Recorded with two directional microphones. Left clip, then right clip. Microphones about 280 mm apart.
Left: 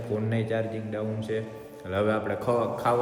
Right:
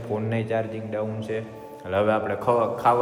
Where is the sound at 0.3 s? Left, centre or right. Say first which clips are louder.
Right 4 dB; centre.